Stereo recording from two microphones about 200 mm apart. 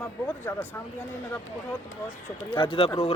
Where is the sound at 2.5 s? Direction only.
25° left (ahead or behind).